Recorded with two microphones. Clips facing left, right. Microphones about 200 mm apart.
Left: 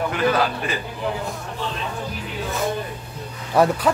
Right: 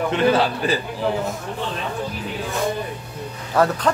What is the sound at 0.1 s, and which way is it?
Speech, 30° right (ahead or behind).